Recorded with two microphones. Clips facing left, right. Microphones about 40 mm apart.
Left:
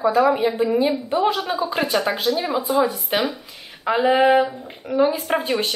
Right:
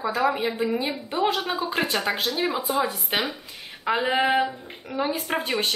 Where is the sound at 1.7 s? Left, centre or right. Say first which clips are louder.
Left 3 dB; centre.